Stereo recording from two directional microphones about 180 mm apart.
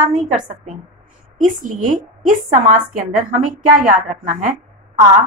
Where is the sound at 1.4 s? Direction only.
45° right (ahead or behind).